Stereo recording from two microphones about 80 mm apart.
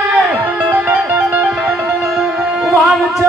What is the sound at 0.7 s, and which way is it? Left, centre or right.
Music, centre.